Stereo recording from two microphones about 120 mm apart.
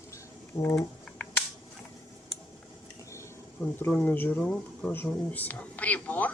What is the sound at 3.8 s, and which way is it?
Speech, 10° left (ahead or behind).